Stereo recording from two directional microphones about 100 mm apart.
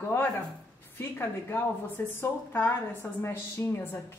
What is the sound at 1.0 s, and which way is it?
A woman's voice, 25° left (ahead or behind).